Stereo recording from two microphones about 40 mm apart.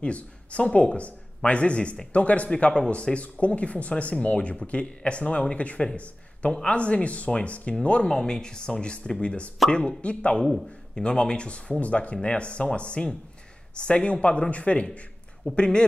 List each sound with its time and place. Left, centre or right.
0.0 s speech: left
2.5 s speech: left
8.0 s speech: centre